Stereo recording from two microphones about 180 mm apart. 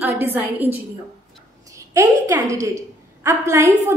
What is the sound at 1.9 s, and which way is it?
A woman's voice, 20° right (ahead or behind).